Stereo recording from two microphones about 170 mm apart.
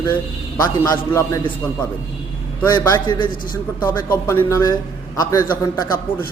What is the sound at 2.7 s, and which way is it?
Speech, 25° left (ahead or behind).